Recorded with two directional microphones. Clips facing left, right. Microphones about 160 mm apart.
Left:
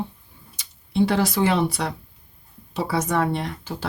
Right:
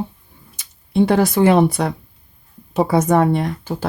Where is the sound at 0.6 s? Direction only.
50° right (ahead or behind).